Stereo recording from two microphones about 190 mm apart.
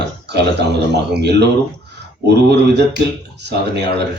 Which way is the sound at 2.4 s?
60° right (ahead or behind).